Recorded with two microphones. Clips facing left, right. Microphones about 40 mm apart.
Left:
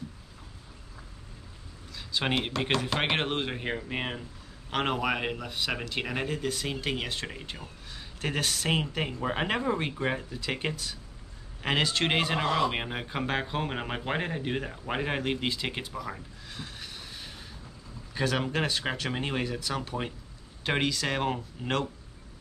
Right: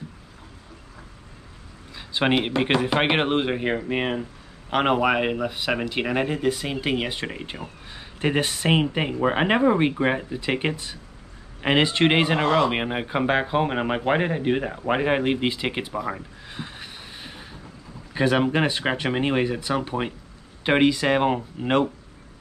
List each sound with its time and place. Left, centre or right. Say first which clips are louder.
2.0 s speech: right 7 dB; right